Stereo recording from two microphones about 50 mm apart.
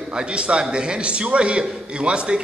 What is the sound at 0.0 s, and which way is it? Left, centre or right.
A man's voice, centre.